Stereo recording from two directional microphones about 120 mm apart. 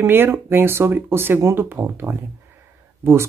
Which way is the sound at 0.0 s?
20° right (ahead or behind).